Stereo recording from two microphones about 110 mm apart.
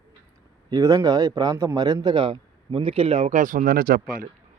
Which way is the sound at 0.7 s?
30° right (ahead or behind).